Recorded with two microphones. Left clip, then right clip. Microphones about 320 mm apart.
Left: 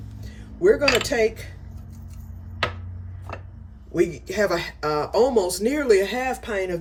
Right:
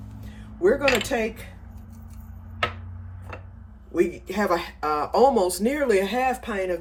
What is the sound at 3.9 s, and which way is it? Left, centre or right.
Speech, centre.